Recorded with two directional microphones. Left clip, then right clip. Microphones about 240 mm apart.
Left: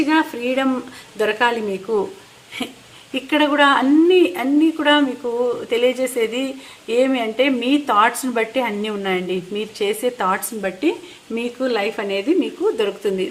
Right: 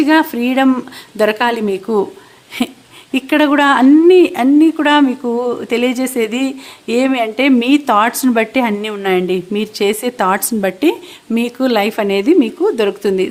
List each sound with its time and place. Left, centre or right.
0.0 s a woman's voice: right
3.1 s a woman's voice: right